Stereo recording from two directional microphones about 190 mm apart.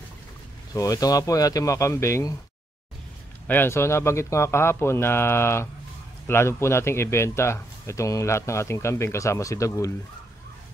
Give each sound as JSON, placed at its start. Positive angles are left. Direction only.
{"t": 0.7, "sound": "a man's voice", "side_deg": 20}
{"t": 3.4, "sound": "a man's voice", "side_deg": 10}